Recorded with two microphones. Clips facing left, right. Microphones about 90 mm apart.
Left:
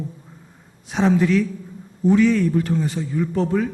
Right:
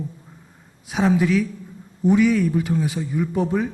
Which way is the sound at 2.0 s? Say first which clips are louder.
Left 1 dB; 15° right (ahead or behind).